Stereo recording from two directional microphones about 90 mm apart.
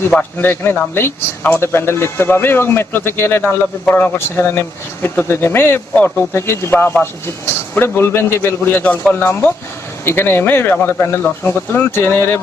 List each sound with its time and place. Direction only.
0.1 s a man's voice: 5° left (ahead or behind)
0.4 s speech: 25° left (ahead or behind)